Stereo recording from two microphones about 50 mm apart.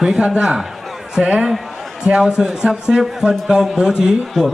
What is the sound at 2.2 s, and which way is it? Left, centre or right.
A man's voice, centre.